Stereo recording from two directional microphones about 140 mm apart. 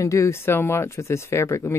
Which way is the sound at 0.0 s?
20° left (ahead or behind).